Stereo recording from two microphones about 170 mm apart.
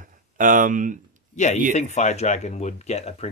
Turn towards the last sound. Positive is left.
turn(degrees=40)  # may be behind; listen again after turning